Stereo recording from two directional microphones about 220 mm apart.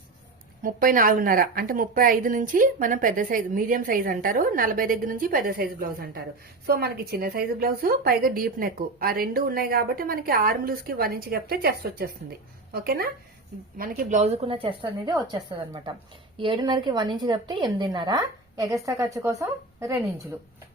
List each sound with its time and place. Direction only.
0.6 s a woman's voice: 40° right (ahead or behind); by 20.0 s 15° right (ahead or behind)